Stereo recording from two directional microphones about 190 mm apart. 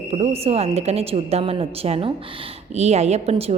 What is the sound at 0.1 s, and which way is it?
A woman's voice, 35° right (ahead or behind).